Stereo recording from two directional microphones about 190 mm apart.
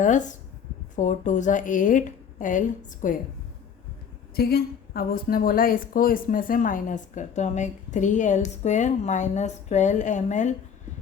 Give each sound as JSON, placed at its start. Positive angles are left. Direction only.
{"t": 0.0, "sound": "a woman's voice", "side_deg": 40}
{"t": 4.4, "sound": "a woman's voice", "side_deg": 55}